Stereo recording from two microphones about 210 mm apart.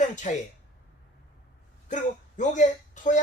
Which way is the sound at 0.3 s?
35° left (ahead or behind).